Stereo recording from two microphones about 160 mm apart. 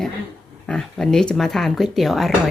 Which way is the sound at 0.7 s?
5° left (ahead or behind).